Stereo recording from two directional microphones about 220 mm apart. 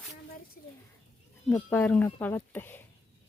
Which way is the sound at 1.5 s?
10° left (ahead or behind).